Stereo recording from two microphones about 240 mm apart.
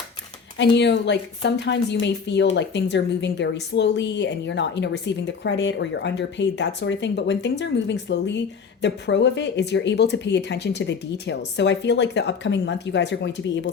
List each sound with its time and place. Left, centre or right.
0.6 s a woman's voice: left